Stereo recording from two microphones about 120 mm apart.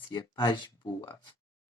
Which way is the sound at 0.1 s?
40° left (ahead or behind).